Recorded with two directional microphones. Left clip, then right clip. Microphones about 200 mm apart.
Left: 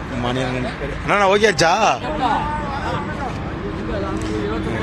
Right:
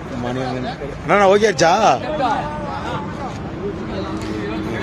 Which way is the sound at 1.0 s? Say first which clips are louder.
Right 2 dB; 15° right (ahead or behind).